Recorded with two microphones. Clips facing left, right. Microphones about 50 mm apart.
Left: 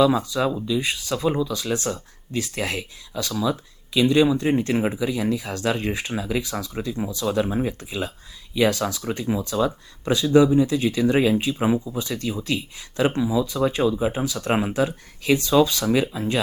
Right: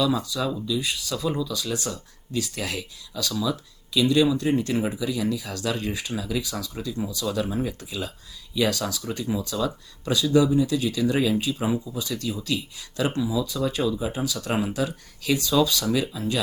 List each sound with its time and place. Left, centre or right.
0.0 s speech: left